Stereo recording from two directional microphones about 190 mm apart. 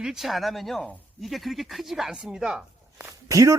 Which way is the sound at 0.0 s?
Centre (ahead or behind).